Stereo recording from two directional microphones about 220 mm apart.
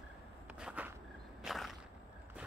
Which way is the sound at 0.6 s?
5° right (ahead or behind).